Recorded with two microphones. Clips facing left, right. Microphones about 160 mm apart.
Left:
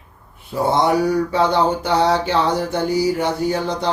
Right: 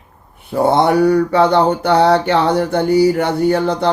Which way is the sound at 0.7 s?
60° right (ahead or behind).